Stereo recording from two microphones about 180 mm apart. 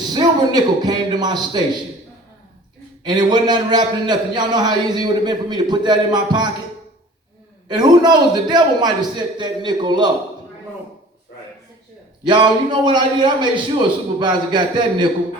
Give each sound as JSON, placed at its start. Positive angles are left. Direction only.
{"t": 0.1, "sound": "a man's voice", "side_deg": -20}
{"t": 3.0, "sound": "a man's voice", "side_deg": -25}
{"t": 7.8, "sound": "a man's voice", "side_deg": -25}
{"t": 12.2, "sound": "a man's voice", "side_deg": -25}